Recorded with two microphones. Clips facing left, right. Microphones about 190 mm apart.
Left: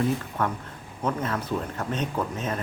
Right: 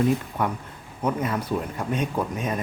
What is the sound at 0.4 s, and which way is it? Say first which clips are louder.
Speech: right 1 dB; 10° right (ahead or behind).